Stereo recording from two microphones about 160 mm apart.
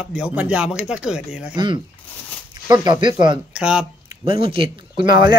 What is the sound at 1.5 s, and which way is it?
Speech, 30° right (ahead or behind).